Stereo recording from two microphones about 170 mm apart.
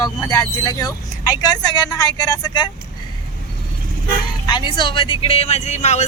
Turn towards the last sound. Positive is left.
turn(degrees=40)  # may be behind; listen again after turning